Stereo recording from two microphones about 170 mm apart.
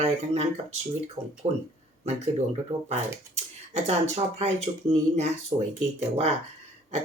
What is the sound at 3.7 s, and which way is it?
Speech, 40° right (ahead or behind).